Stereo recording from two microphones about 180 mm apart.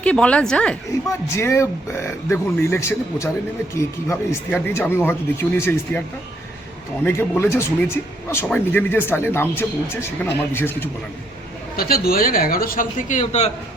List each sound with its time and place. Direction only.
0.0 s speech: 5° left (ahead or behind)
1.3 s speech: 15° left (ahead or behind)
7.0 s speech: 15° left (ahead or behind)
11.8 s a man's voice: 55° left (ahead or behind); by 13.5 s 40° left (ahead or behind)